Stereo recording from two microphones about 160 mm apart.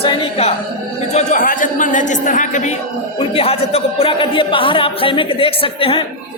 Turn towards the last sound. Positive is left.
turn(degrees=35)  # may be behind; listen again after turning